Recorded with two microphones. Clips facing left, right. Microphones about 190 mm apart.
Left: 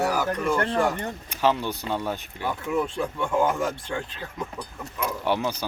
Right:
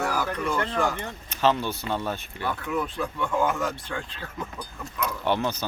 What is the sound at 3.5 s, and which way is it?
Speech, 25° left (ahead or behind).